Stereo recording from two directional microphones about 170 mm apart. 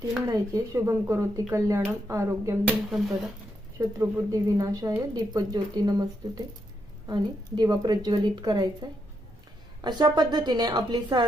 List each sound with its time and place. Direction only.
0.3 s speech: 20° right (ahead or behind)
3.8 s speech: 15° right (ahead or behind)